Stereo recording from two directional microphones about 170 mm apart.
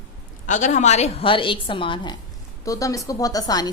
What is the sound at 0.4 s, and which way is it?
Speech, 45° left (ahead or behind).